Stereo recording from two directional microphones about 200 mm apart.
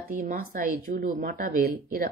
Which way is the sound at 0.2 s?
45° right (ahead or behind).